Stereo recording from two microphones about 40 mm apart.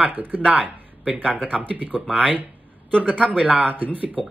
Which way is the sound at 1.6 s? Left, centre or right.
Right.